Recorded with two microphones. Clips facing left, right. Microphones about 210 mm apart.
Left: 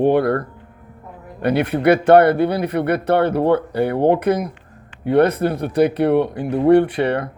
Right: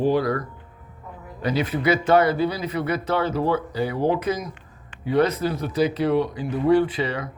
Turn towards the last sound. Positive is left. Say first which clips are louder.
# left 6 dB
turn(degrees=60)  # may be behind; listen again after turning